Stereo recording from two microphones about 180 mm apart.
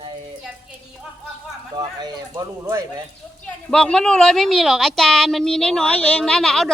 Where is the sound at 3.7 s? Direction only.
5° left (ahead or behind).